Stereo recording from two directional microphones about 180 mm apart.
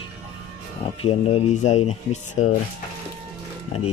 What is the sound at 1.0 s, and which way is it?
Speech, 35° left (ahead or behind).